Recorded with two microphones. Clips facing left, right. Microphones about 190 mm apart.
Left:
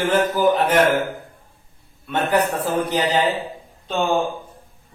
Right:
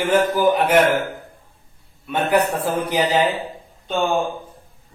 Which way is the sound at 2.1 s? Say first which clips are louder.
Right 1 dB; 10° right (ahead or behind).